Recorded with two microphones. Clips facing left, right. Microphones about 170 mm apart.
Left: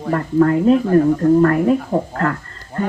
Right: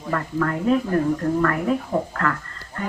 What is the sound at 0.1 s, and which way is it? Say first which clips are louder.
Speech: left 9 dB; 30° left (ahead or behind).